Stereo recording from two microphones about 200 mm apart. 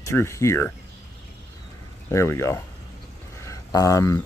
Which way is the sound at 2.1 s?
15° left (ahead or behind).